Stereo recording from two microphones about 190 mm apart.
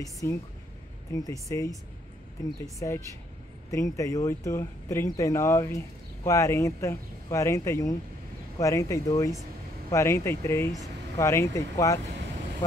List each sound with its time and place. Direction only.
0.0 s speech: 15° left (ahead or behind)